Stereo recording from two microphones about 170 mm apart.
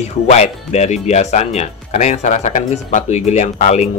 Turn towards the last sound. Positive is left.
turn(degrees=45)  # may be behind; listen again after turning